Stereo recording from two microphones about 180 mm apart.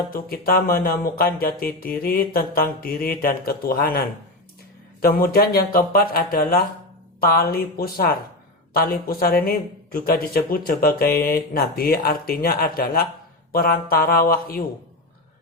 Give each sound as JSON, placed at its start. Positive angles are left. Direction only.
{"t": 0.1, "sound": "a man's voice", "side_deg": 55}